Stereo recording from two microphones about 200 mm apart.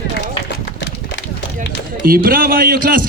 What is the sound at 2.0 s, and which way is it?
A man's voice, 45° right (ahead or behind).